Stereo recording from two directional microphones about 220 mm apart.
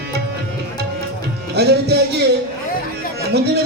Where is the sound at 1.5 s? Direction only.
50° right (ahead or behind).